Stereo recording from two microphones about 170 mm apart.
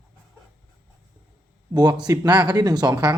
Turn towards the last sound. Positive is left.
turn(degrees=-25)  # may be behind; listen again after turning